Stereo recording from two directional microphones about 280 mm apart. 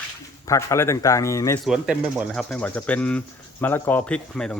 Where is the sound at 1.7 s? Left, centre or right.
Centre.